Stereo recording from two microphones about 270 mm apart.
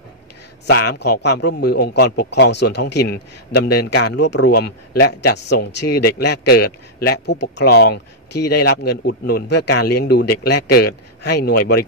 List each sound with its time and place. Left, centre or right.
0.7 s speech: left